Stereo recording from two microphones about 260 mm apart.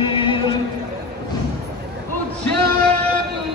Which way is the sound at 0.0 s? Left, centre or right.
Centre.